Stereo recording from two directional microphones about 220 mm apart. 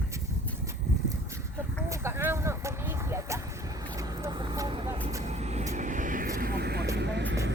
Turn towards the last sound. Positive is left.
turn(degrees=-55)  # may be behind; listen again after turning